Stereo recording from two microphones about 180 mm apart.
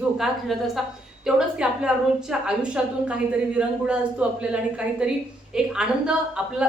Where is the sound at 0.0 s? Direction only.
Centre (ahead or behind).